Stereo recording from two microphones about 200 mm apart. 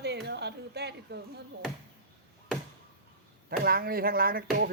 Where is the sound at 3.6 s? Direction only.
50° right (ahead or behind).